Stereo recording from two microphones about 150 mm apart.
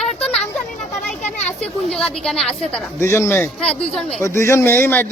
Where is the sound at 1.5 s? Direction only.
5° left (ahead or behind).